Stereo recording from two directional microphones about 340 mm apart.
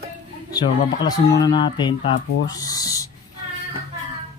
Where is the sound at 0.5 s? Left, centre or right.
Centre.